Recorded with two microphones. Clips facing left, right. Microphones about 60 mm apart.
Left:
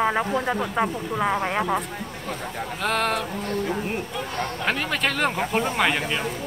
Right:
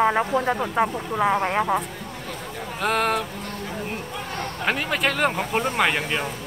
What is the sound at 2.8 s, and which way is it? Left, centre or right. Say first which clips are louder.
Speech: right 2 dB; centre.